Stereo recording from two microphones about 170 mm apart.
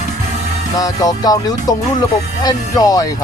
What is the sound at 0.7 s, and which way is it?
Music, 20° left (ahead or behind).